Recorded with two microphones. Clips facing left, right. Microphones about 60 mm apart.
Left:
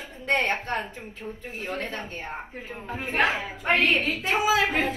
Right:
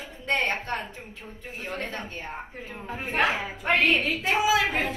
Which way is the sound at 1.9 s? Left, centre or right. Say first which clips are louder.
Left 1 dB; left.